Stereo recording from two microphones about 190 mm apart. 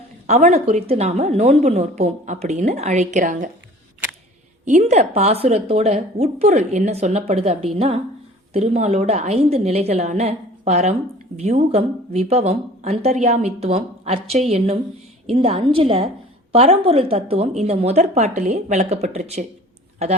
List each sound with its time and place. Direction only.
0.3 s speech: 35° right (ahead or behind)
4.6 s a woman's voice: 40° right (ahead or behind)